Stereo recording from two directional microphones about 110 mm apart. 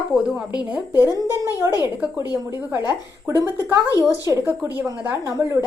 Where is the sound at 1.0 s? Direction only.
30° right (ahead or behind).